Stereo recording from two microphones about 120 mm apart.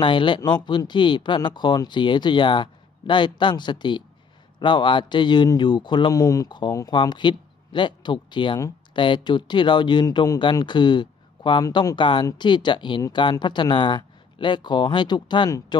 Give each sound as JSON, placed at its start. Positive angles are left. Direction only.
{"t": 0.0, "sound": "speech", "side_deg": 45}